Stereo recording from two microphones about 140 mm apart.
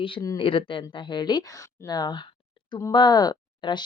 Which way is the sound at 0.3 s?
40° left (ahead or behind).